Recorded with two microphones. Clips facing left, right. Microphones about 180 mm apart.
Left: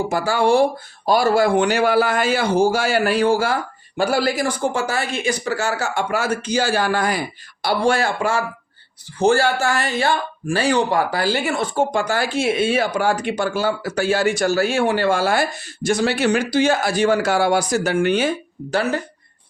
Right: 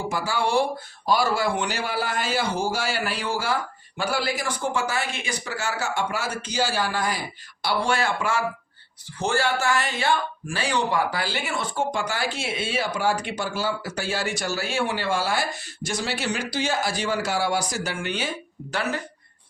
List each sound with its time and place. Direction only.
0.1 s speech: 50° left (ahead or behind)
7.6 s speech: 40° left (ahead or behind)